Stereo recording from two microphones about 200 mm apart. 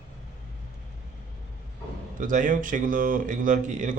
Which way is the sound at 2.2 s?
40° right (ahead or behind).